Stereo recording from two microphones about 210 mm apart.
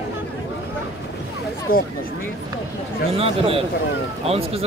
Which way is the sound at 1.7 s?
45° left (ahead or behind).